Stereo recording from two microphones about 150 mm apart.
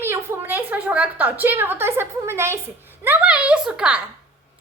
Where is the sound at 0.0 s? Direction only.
15° right (ahead or behind).